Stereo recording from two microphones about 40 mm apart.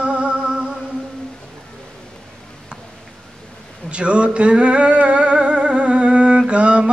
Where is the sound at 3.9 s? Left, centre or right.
Right.